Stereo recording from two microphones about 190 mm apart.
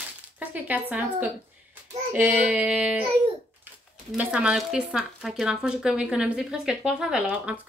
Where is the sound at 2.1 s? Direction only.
10° right (ahead or behind).